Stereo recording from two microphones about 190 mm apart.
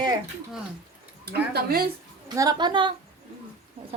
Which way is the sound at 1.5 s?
55° right (ahead or behind).